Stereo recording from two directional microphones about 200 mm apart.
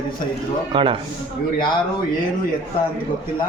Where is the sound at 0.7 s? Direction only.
25° right (ahead or behind).